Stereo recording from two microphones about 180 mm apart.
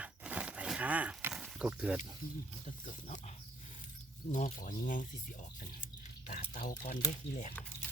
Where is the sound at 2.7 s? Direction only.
45° left (ahead or behind).